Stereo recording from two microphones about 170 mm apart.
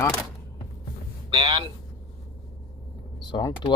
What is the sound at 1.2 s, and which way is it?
Speech, 30° right (ahead or behind).